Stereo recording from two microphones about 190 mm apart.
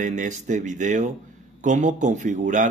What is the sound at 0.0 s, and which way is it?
Speech, 40° right (ahead or behind).